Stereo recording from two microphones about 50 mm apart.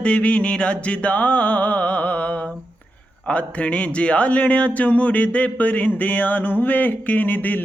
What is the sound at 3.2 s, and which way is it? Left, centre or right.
Speech, left.